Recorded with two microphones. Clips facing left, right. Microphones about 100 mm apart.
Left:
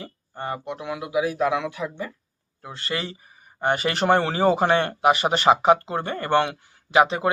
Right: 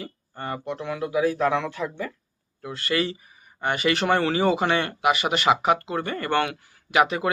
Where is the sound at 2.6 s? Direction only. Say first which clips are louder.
Right 4 dB; 25° left (ahead or behind).